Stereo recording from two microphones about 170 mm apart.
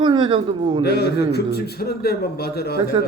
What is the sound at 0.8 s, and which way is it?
A man's voice, 70° left (ahead or behind).